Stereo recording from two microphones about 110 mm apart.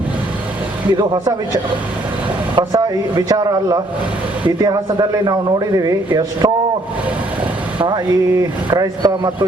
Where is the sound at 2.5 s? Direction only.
40° right (ahead or behind).